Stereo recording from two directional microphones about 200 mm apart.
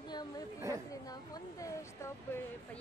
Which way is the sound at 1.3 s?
15° left (ahead or behind).